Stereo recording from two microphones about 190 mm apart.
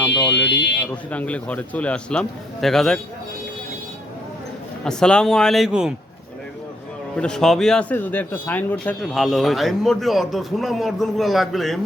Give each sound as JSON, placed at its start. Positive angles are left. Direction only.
{"t": 0.3, "sound": "speech", "side_deg": 65}
{"t": 1.1, "sound": "a man's voice", "side_deg": 5}
{"t": 4.8, "sound": "a man's voice", "side_deg": 5}
{"t": 7.2, "sound": "a man's voice", "side_deg": 5}